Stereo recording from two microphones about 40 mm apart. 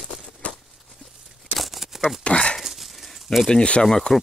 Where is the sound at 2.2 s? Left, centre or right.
Left.